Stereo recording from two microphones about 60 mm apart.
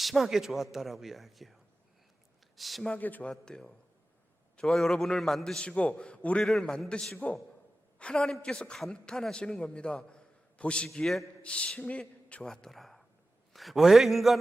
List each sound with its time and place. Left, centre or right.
0.0 s speech: centre
2.6 s speech: centre
3.0 s speech: left
3.2 s a man's voice: centre
10.8 s speech: centre
11.4 s a man's voice: centre
12.4 s speech: centre